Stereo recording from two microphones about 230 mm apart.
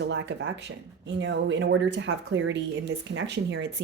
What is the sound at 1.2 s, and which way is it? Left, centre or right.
Speech, right.